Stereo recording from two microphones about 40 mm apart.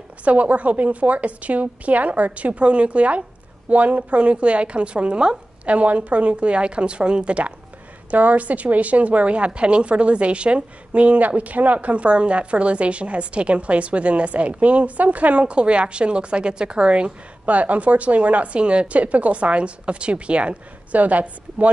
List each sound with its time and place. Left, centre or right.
0.2 s a woman's voice: right
5.7 s a woman's voice: right
17.5 s a woman's voice: right